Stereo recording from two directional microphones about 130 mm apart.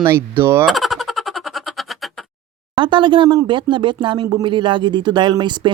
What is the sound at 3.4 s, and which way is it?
Speech, 40° right (ahead or behind).